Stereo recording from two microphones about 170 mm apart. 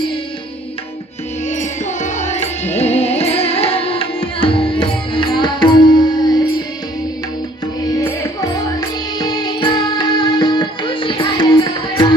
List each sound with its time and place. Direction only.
1.5 s music: 45° left (ahead or behind); by 6.5 s 25° left (ahead or behind)
7.9 s music: 20° left (ahead or behind)